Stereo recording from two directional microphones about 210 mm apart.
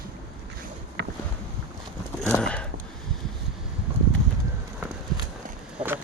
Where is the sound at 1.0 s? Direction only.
55° right (ahead or behind).